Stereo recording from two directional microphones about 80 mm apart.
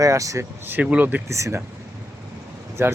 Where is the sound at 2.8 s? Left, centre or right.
Right.